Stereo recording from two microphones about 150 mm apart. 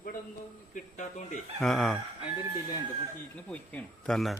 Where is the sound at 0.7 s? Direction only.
55° left (ahead or behind).